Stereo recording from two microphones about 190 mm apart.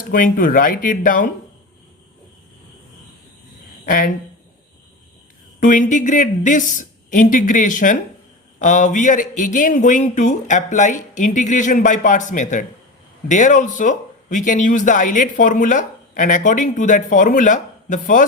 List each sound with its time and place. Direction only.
0.1 s speech: 45° left (ahead or behind)
3.8 s speech: 45° left (ahead or behind)
5.5 s speech: 40° left (ahead or behind)